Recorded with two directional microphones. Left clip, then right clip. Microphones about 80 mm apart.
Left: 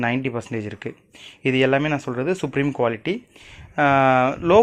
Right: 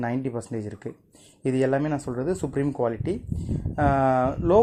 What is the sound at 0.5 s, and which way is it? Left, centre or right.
Speech, centre.